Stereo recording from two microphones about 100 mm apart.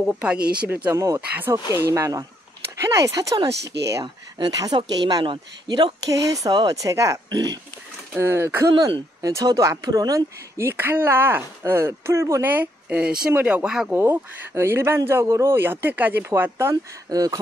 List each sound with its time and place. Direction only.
0.0 s speech: 10° right (ahead or behind)
0.9 s speech: 35° right (ahead or behind)
1.5 s speech: 25° right (ahead or behind)
4.0 s speech: 45° right (ahead or behind)
6.0 s speech: 35° right (ahead or behind)
7.2 s speech: 45° right (ahead or behind)
8.1 s speech: 25° right (ahead or behind)
9.2 s speech: 35° right (ahead or behind); by 13.7 s 15° right (ahead or behind)
13.7 s speech: 5° right (ahead or behind)
13.9 s speech: 25° right (ahead or behind)
17.1 s speech: 40° right (ahead or behind)